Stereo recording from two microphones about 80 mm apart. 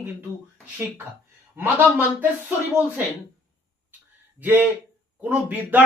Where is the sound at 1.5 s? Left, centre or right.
Right.